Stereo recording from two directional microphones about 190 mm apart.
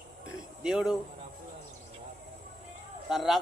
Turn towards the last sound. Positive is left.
turn(degrees=0)  # may be behind; listen again after turning